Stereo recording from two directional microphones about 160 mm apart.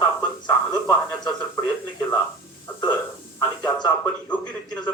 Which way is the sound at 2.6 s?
20° left (ahead or behind).